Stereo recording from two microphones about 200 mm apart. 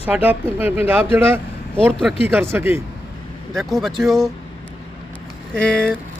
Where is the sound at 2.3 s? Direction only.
10° right (ahead or behind).